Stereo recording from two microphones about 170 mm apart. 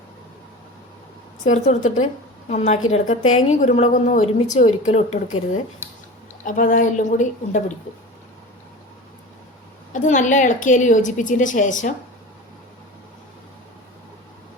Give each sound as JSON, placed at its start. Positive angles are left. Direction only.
{"t": 1.5, "sound": "a woman's voice", "side_deg": 40}
{"t": 6.4, "sound": "a woman's voice", "side_deg": 50}
{"t": 9.9, "sound": "a woman's voice", "side_deg": 50}